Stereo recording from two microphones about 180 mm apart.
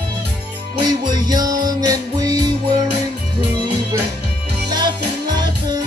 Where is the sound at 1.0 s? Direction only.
25° right (ahead or behind).